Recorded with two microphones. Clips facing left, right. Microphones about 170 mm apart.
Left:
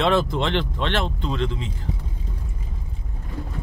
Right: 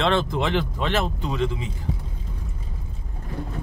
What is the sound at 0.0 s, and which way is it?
Speech, centre (ahead or behind).